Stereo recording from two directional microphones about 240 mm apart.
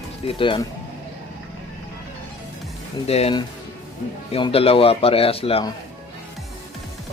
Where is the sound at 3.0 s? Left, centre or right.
Left.